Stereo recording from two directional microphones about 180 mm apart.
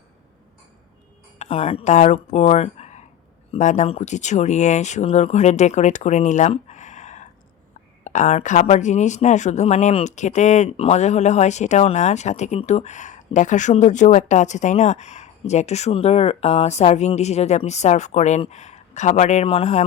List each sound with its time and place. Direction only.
1.4 s speech: 35° left (ahead or behind)